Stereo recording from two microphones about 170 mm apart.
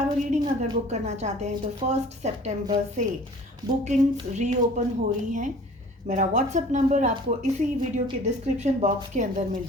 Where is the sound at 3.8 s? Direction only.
45° right (ahead or behind).